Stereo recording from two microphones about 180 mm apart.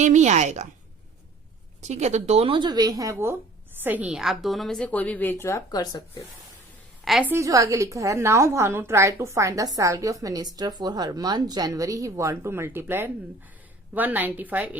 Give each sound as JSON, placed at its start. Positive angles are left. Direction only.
{"t": 0.0, "sound": "a woman's voice", "side_deg": -40}
{"t": 1.9, "sound": "a woman's voice", "side_deg": -40}
{"t": 7.0, "sound": "a woman's voice", "side_deg": 0}
{"t": 7.3, "sound": "a woman's voice", "side_deg": -15}